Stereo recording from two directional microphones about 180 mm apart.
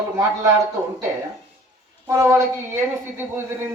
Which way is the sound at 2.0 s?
15° right (ahead or behind).